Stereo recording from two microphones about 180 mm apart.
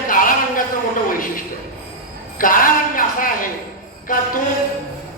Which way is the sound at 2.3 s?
50° left (ahead or behind).